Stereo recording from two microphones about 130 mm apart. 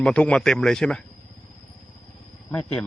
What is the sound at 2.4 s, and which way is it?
Speech, 10° left (ahead or behind).